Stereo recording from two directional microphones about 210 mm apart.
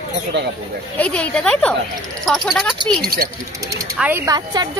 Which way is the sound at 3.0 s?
45° right (ahead or behind).